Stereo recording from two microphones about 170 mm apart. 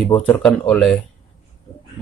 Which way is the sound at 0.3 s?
5° left (ahead or behind).